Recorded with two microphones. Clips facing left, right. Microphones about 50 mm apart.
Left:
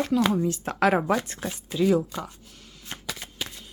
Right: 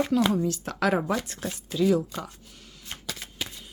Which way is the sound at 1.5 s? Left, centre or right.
Centre.